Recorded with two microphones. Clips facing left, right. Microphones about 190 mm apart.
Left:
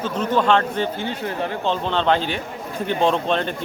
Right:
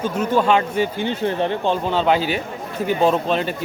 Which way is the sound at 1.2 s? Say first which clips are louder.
Right 6 dB; 25° right (ahead or behind).